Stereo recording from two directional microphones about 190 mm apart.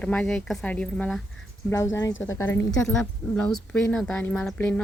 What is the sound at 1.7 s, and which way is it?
A woman's voice, 15° left (ahead or behind).